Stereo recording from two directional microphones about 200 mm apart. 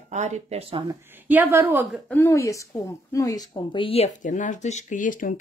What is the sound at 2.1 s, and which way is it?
Speech, 15° left (ahead or behind).